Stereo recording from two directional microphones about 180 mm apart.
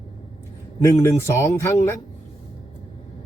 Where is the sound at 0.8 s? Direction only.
15° left (ahead or behind).